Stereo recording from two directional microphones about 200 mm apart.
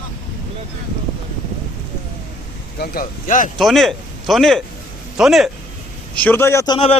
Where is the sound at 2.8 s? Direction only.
45° left (ahead or behind).